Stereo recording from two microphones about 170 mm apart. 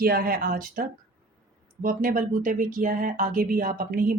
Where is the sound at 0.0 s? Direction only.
60° right (ahead or behind).